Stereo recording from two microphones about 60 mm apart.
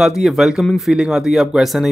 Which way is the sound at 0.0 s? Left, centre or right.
Centre.